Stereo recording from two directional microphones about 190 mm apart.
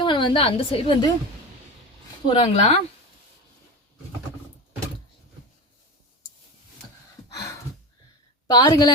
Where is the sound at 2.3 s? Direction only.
30° left (ahead or behind).